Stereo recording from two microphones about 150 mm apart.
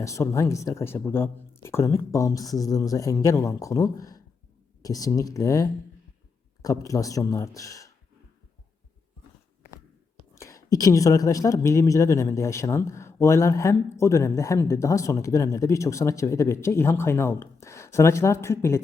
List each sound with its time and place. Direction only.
0.0 s speech: 20° left (ahead or behind)
10.3 s speech: 20° left (ahead or behind)